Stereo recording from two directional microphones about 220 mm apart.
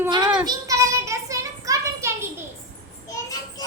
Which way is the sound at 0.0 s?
20° right (ahead or behind).